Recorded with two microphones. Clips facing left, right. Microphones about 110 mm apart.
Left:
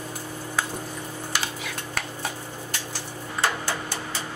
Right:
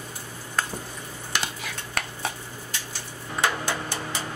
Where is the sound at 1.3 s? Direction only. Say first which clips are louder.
Right 1 dB; centre (ahead or behind).